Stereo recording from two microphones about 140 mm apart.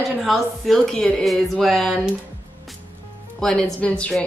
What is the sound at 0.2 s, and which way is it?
Speech, centre (ahead or behind).